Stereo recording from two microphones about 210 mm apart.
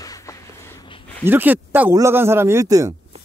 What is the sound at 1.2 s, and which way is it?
Speech, 10° right (ahead or behind).